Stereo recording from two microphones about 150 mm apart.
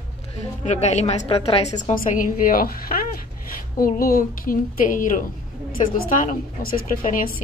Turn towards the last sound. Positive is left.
turn(degrees=70)  # may be behind; listen again after turning